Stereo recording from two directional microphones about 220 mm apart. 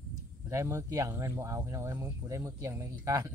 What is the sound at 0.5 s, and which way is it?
Speech, 15° right (ahead or behind).